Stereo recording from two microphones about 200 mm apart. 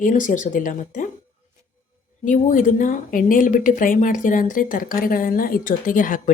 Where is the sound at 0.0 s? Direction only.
40° left (ahead or behind).